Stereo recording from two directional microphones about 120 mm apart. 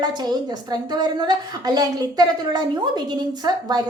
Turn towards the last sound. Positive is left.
turn(degrees=-35)  # may be behind; listen again after turning